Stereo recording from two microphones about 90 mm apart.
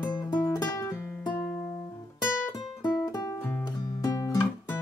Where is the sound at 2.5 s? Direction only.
50° left (ahead or behind).